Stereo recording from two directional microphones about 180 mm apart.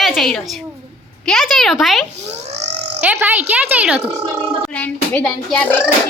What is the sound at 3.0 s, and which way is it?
Speech, 10° right (ahead or behind).